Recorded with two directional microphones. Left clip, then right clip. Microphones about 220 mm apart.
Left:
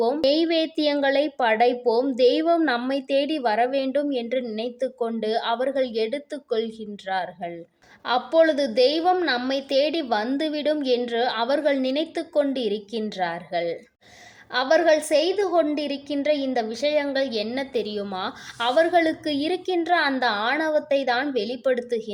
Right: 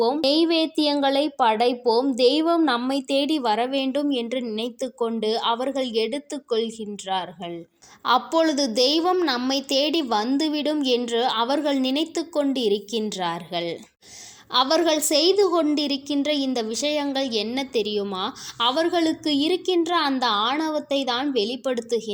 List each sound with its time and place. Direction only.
0.0 s a woman's voice: 15° right (ahead or behind)